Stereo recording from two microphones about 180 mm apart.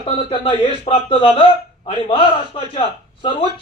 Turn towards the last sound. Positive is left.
turn(degrees=30)  # may be behind; listen again after turning